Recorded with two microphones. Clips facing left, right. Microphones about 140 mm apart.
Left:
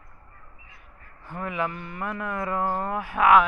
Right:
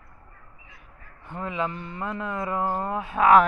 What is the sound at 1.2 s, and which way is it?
Speech, 25° right (ahead or behind).